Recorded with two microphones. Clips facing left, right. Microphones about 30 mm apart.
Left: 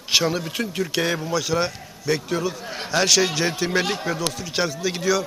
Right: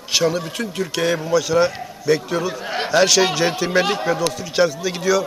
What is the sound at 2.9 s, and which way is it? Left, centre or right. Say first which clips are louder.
A man's voice: right 4 dB; centre.